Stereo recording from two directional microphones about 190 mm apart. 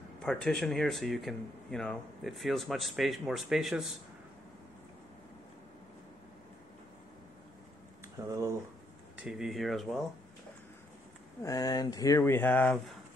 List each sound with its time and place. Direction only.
0.2 s speech: 5° left (ahead or behind)
8.3 s speech: 15° right (ahead or behind)
9.2 s speech: centre (ahead or behind)
11.4 s speech: 20° left (ahead or behind)